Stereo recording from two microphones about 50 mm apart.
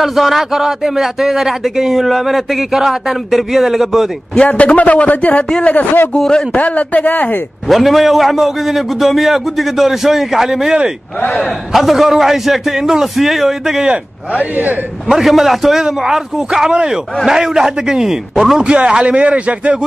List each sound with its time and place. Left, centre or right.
0.0 s speech: centre
4.5 s a man's voice: left
6.1 s a man's voice: centre
6.5 s speech: left
7.6 s speech: centre
14.4 s a man's voice: right
15.0 s a man's voice: centre
18.6 s speech: right